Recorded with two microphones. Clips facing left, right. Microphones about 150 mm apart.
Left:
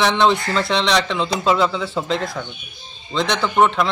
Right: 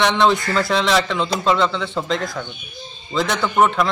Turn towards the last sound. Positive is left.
turn(degrees=0)  # may be behind; listen again after turning